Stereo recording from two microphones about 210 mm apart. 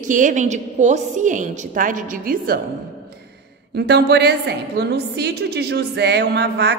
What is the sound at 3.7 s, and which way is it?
A woman's voice, 50° right (ahead or behind).